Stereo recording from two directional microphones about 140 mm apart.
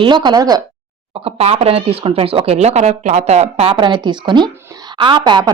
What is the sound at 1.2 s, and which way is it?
Speech, 45° right (ahead or behind).